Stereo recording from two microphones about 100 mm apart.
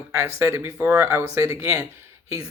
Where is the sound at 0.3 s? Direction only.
25° right (ahead or behind).